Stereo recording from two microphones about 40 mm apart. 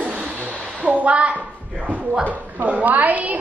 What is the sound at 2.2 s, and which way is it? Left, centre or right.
A woman's voice, right.